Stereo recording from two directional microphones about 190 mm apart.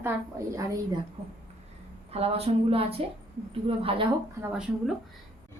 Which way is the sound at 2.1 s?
30° right (ahead or behind).